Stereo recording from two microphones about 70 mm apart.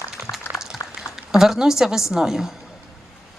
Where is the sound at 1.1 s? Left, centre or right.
Centre.